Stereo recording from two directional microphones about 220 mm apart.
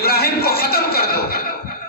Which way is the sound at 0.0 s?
45° left (ahead or behind).